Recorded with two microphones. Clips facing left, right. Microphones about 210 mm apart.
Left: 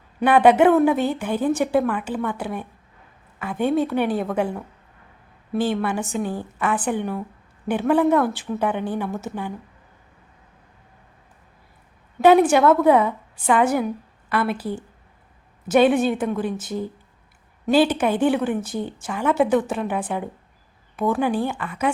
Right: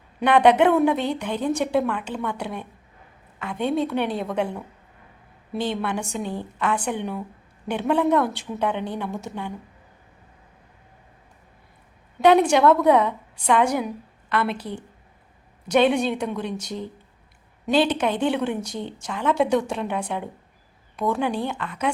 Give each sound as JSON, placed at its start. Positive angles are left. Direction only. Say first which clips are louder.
{"t": 0.2, "sound": "a woman's voice", "louder": "left 2 dB", "side_deg": 5}
{"t": 12.2, "sound": "a woman's voice", "louder": "left 2 dB", "side_deg": 5}